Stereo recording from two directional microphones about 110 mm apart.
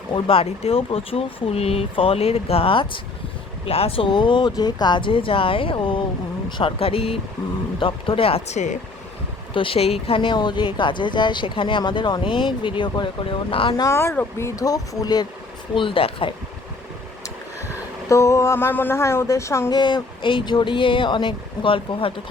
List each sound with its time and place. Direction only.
0.3 s speech: 60° left (ahead or behind)
3.7 s speech: 65° left (ahead or behind); by 6.0 s 50° left (ahead or behind)
6.6 s speech: 60° left (ahead or behind); by 8.8 s 90° left
9.6 s speech: 60° left (ahead or behind)
13.7 s speech: 25° left (ahead or behind)
15.7 s speech: 50° left (ahead or behind)
18.1 s speech: 25° left (ahead or behind)
19.7 s speech: 40° left (ahead or behind)